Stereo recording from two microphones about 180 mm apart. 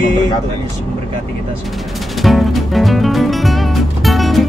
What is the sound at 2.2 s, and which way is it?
Music, centre (ahead or behind).